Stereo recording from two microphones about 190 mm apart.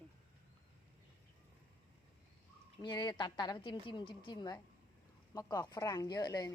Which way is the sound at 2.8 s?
25° left (ahead or behind).